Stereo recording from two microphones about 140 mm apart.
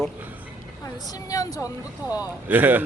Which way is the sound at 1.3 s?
25° left (ahead or behind).